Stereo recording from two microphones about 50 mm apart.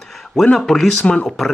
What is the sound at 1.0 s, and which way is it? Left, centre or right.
Speech, centre.